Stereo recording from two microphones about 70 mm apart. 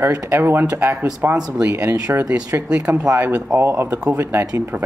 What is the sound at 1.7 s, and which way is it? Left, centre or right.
Speech, right.